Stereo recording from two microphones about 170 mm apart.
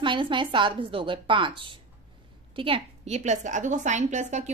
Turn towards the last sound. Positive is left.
turn(degrees=-45)  # may be behind; listen again after turning